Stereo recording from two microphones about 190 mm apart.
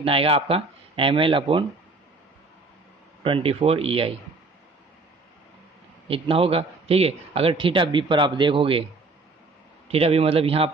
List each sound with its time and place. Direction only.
0.0 s a man's voice: 30° right (ahead or behind)
3.3 s speech: 30° right (ahead or behind)
6.0 s a man's voice: 30° right (ahead or behind)
9.8 s speech: 30° right (ahead or behind)